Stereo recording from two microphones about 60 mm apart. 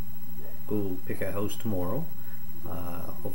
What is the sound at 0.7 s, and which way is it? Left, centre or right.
Speech, right.